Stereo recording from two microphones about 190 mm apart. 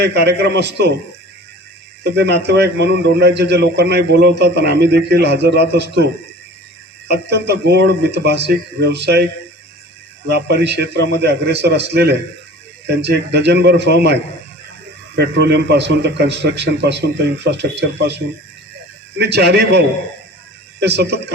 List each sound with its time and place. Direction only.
0.0 s a man's voice: 60° right (ahead or behind)
2.1 s a man's voice: 60° right (ahead or behind)
7.1 s a man's voice: 60° right (ahead or behind)
10.2 s a man's voice: 60° right (ahead or behind)
19.2 s a man's voice: 60° right (ahead or behind)